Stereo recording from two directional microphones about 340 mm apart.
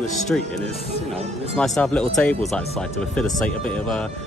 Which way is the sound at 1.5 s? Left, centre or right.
Centre.